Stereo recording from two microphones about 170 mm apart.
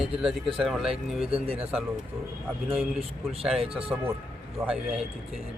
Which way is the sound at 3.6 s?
35° right (ahead or behind).